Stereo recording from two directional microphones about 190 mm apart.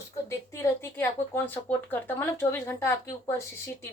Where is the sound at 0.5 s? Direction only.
15° left (ahead or behind).